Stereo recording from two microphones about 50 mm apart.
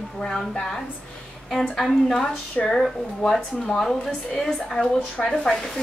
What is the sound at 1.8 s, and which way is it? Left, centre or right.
Speech, centre.